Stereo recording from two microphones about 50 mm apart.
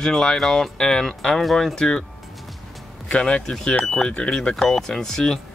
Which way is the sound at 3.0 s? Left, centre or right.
Centre.